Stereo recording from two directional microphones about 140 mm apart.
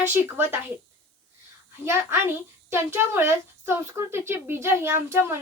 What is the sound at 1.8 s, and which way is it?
Speech, 20° right (ahead or behind).